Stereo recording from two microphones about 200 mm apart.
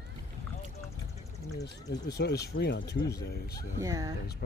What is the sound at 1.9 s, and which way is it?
Speech, 60° left (ahead or behind).